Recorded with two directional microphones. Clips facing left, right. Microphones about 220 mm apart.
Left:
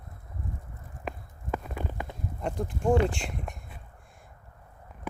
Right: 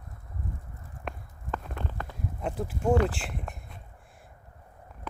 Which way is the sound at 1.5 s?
10° left (ahead or behind).